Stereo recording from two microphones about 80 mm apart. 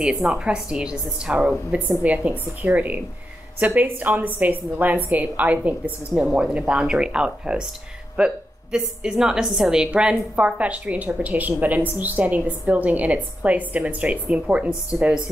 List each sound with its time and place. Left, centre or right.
0.0 s a woman's voice: centre